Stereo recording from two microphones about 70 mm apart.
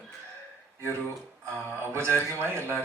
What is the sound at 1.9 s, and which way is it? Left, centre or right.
Speech, right.